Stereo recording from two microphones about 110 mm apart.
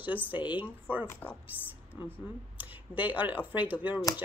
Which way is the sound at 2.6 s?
15° right (ahead or behind).